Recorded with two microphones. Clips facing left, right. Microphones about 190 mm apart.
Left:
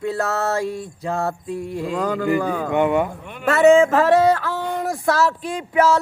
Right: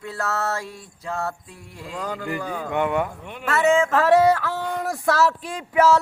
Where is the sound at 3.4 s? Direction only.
25° left (ahead or behind).